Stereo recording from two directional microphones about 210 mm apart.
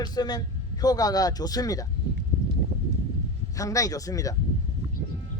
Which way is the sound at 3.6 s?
15° left (ahead or behind).